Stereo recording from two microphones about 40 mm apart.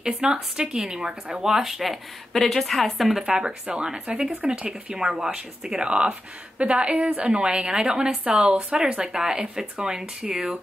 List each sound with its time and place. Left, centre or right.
0.0 s speech: centre
2.3 s a woman's voice: centre
3.3 s a woman's voice: right
8.2 s a woman's voice: right
8.7 s speech: centre